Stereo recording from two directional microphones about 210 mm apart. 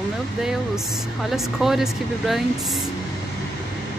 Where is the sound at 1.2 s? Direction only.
Centre (ahead or behind).